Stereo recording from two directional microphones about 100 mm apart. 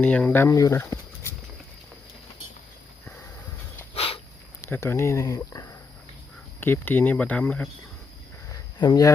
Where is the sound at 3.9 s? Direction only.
70° left (ahead or behind).